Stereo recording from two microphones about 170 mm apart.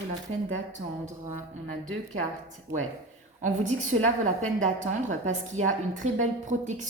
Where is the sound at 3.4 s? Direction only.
45° right (ahead or behind).